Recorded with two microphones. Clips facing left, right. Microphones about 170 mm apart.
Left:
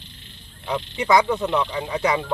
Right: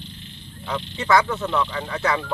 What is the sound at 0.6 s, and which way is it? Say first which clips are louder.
Speech: left 1 dB; 15° left (ahead or behind).